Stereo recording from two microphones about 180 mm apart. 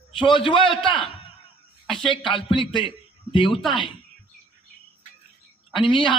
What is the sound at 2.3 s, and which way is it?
A man's voice, 25° left (ahead or behind).